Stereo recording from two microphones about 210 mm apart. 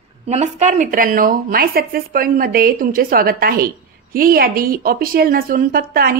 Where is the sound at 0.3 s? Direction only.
35° right (ahead or behind).